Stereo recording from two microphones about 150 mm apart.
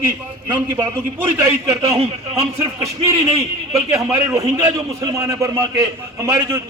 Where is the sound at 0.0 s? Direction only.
15° right (ahead or behind).